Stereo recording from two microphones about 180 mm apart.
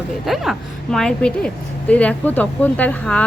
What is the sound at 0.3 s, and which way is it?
Speech, centre (ahead or behind).